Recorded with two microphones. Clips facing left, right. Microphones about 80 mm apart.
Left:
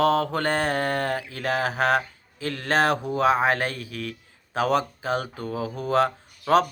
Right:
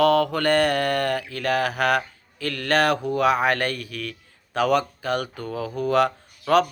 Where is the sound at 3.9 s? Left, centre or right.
Right.